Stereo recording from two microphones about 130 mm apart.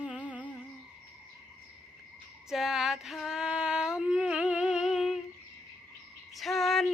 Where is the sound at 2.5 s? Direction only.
5° right (ahead or behind).